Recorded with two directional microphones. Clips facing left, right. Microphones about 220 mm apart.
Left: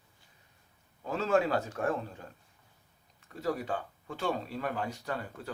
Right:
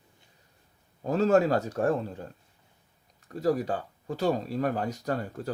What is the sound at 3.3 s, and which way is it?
Speech, 40° right (ahead or behind).